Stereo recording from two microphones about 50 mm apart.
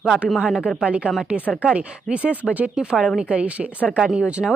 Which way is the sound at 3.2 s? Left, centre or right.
Right.